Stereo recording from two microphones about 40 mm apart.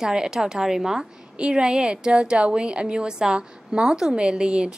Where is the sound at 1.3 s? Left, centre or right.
Right.